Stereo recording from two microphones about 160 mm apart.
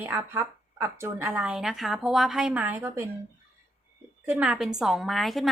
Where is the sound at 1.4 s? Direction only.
5° right (ahead or behind).